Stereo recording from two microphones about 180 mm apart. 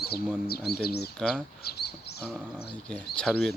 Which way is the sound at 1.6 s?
60° left (ahead or behind).